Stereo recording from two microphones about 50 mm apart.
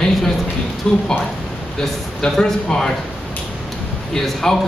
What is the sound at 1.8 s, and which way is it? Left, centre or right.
Speech, centre.